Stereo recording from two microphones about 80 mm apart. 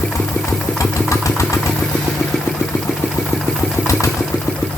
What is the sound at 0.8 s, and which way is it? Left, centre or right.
Engine, left.